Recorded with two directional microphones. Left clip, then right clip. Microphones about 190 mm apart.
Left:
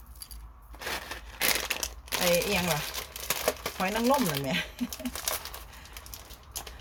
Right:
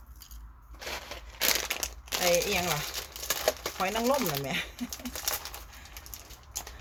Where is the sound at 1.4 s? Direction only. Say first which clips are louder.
Even; 10° left (ahead or behind).